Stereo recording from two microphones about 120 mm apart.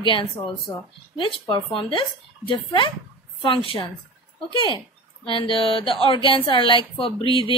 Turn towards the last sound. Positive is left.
turn(degrees=50)  # may be behind; listen again after turning